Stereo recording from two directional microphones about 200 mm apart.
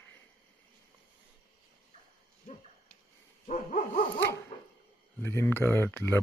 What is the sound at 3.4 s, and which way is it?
Dog, 35° left (ahead or behind).